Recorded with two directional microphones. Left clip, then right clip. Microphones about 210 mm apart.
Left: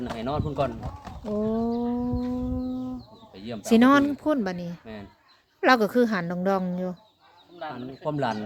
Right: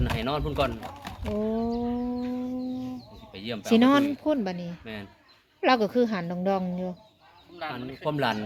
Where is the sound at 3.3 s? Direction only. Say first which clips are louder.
Right 2 dB; centre (ahead or behind).